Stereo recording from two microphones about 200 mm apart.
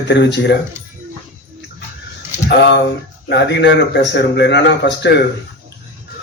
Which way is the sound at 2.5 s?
55° left (ahead or behind).